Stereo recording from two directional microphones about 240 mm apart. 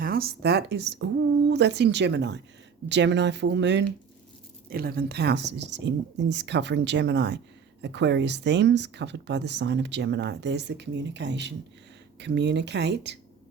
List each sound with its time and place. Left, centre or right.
0.0 s speech: right